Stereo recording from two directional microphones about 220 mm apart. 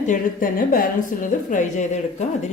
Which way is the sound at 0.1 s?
40° left (ahead or behind).